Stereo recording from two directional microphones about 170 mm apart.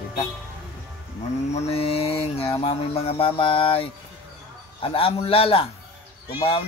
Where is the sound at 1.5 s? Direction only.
35° left (ahead or behind).